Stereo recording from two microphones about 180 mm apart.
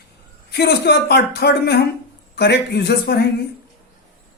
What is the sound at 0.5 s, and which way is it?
A man's voice, 65° left (ahead or behind).